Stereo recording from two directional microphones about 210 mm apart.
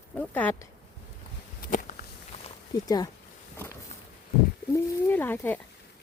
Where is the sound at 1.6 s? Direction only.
40° left (ahead or behind).